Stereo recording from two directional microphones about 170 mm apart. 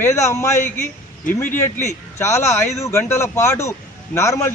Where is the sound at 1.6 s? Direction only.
15° left (ahead or behind).